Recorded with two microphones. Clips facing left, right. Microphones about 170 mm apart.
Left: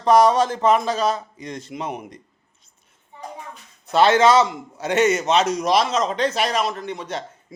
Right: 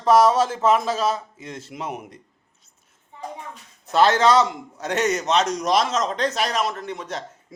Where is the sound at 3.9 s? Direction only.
Centre (ahead or behind).